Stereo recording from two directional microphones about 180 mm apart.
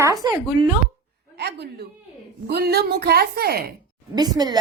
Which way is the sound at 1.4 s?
65° right (ahead or behind).